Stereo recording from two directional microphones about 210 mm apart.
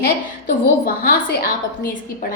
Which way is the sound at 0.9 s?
45° left (ahead or behind).